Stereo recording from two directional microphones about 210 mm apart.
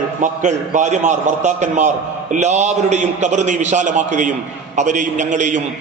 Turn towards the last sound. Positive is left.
turn(degrees=-35)  # may be behind; listen again after turning